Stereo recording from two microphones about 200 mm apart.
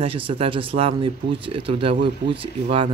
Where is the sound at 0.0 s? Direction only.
25° right (ahead or behind).